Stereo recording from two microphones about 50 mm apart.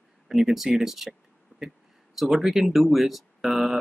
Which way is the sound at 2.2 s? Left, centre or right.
Centre.